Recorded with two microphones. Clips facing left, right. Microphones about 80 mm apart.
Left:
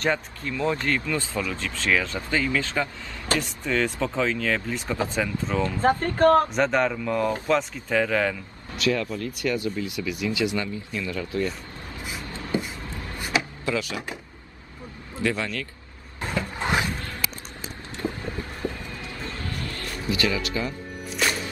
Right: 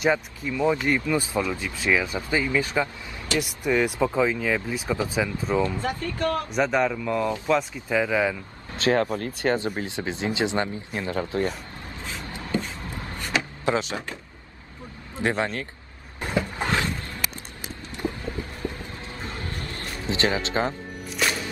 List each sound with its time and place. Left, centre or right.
0.0 s speech: centre
5.8 s speech: left
6.5 s speech: centre
8.7 s speech: right
10.9 s speech: right
12.4 s vehicle: centre
13.7 s speech: right
15.1 s speech: right
16.2 s cupboard open or close: centre
16.6 s a sound: centre
17.9 s vehicle: right
19.1 s music: right